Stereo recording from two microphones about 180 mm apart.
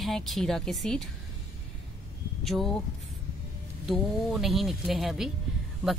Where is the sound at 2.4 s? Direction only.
Centre (ahead or behind).